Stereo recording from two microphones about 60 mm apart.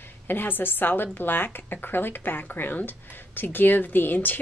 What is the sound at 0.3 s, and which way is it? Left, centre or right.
A woman's voice, left.